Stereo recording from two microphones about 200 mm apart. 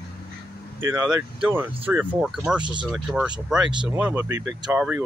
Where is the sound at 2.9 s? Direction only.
Centre (ahead or behind).